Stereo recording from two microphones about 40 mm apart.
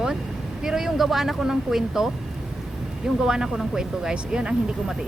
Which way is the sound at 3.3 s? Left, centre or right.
Centre.